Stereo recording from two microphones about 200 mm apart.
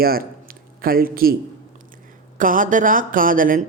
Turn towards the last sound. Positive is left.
turn(degrees=-45)  # may be behind; listen again after turning